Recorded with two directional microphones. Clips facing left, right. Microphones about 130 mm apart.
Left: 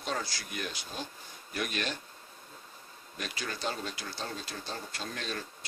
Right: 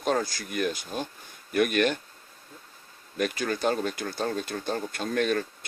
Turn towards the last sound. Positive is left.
turn(degrees=-55)  # may be behind; listen again after turning